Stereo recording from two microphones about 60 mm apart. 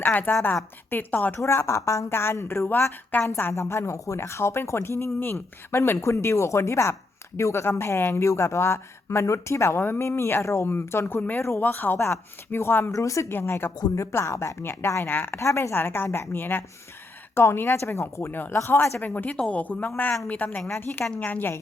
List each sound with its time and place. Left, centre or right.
0.0 s speech: left
1.4 s speech: left
3.5 s speech: left
6.0 s speech: left
11.6 s speech: left
11.9 s speech: left
12.9 s speech: left
13.2 s speech: left
15.0 s speech: left
15.4 s speech: left
15.7 s speech: left
18.5 s speech: left
19.0 s speech: left